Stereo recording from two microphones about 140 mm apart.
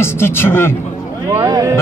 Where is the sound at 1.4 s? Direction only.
30° right (ahead or behind).